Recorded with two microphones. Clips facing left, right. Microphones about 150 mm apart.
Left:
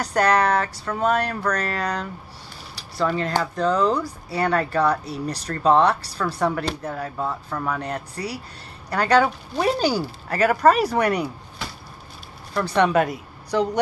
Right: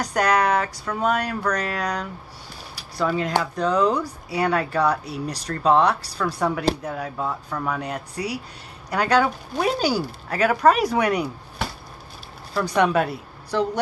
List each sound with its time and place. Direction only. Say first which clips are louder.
0.0 s speech: left 1 dB; 5° right (ahead or behind)
12.5 s speech: left 1 dB; 5° right (ahead or behind)